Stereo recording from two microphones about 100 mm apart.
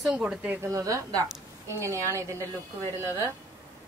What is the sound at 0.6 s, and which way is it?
A woman's voice, 35° right (ahead or behind).